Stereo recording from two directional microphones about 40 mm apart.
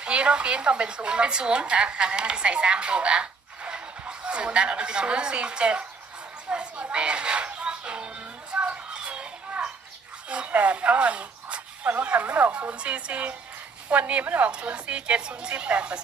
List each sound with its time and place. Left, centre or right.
0.0 s speech: right
6.5 s music: right
8.5 s children playing: right
10.2 s a sound: right
11.9 s speech: right
12.7 s speech: right